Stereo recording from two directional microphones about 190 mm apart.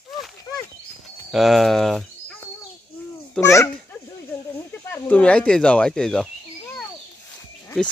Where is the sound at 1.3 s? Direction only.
Centre (ahead or behind).